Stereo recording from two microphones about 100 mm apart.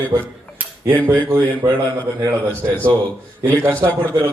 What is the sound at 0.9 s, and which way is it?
A man's voice, 25° right (ahead or behind).